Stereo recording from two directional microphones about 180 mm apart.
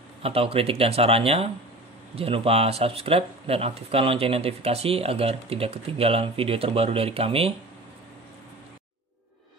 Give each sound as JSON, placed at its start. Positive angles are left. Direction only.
{"t": 0.2, "sound": "speech", "side_deg": -30}